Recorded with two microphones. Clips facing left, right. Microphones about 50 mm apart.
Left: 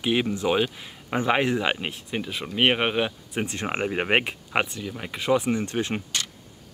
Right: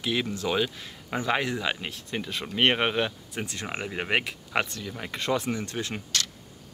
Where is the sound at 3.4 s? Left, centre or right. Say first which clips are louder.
Left 7 dB; left.